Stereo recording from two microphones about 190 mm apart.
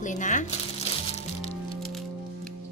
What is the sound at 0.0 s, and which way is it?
Speech, 40° left (ahead or behind).